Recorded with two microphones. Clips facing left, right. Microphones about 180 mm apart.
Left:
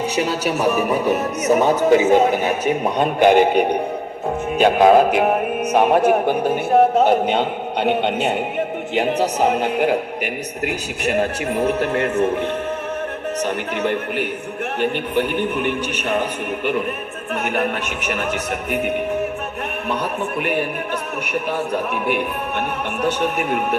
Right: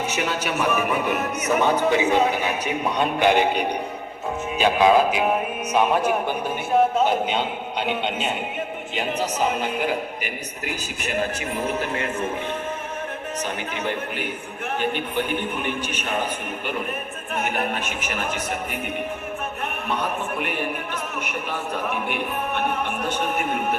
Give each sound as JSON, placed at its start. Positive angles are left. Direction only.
{"t": 0.2, "sound": "a man's voice", "side_deg": 35}
{"t": 13.4, "sound": "a man's voice", "side_deg": 65}
{"t": 17.4, "sound": "a man's voice", "side_deg": 65}